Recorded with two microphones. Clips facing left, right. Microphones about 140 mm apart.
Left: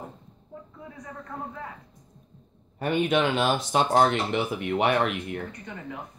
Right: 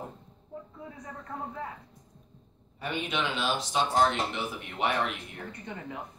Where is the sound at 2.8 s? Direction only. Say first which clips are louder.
Left 9 dB; 50° left (ahead or behind); by 5.4 s 65° left (ahead or behind).